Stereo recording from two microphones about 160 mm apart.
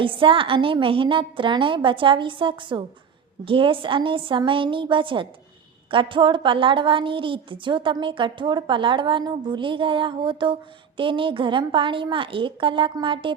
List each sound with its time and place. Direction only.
0.0 s a woman's voice: 35° right (ahead or behind)